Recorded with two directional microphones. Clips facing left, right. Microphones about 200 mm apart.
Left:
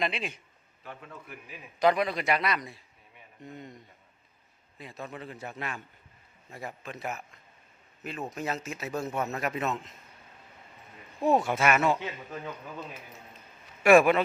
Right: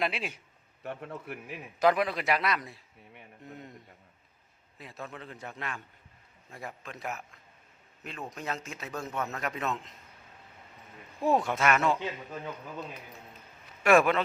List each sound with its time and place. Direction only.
0.0 s a man's voice: 5° right (ahead or behind)
0.8 s a man's voice: 60° right (ahead or behind)
1.8 s a man's voice: centre (ahead or behind)
4.8 s a man's voice: centre (ahead or behind)
11.2 s a man's voice: centre (ahead or behind)